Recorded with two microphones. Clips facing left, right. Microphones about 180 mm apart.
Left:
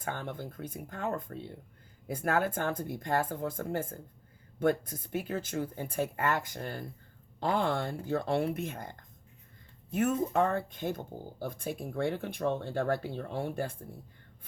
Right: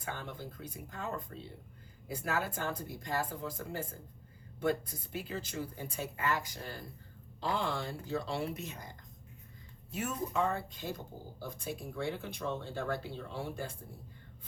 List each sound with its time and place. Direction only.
0.0 s speech: 55° left (ahead or behind)